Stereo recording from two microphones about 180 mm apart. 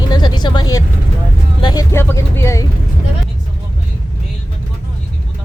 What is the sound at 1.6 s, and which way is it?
Speech, 20° left (ahead or behind).